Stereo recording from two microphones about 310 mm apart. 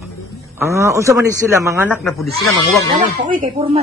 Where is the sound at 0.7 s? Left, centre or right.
Centre.